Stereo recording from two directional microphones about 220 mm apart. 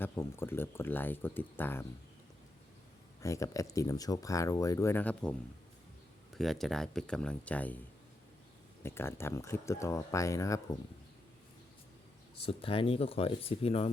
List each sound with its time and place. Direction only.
0.0 s speech: 10° left (ahead or behind)
3.2 s speech: 15° left (ahead or behind)
8.8 s speech: 10° left (ahead or behind)
12.4 s speech: 25° left (ahead or behind)